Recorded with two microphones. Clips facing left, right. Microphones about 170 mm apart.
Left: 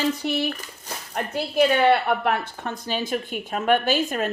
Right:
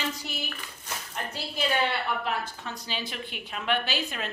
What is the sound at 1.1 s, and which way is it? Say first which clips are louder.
A woman's voice: left 11 dB; 55° left (ahead or behind).